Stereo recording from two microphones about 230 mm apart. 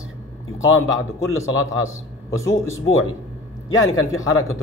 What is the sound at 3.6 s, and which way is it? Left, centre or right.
Speech, left.